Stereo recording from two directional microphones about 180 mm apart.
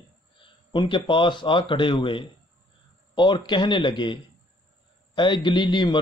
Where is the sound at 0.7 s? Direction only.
25° left (ahead or behind).